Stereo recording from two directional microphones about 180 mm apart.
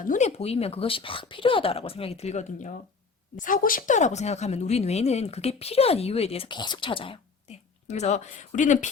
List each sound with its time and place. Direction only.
0.0 s a woman's voice: 45° left (ahead or behind)